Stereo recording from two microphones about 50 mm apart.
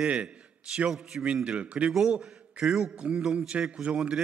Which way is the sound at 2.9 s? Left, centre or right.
Right.